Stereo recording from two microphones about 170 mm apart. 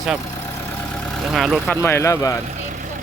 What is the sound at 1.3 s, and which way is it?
Speech, centre (ahead or behind).